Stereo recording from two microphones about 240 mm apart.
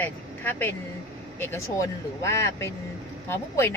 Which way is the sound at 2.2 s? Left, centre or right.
Centre.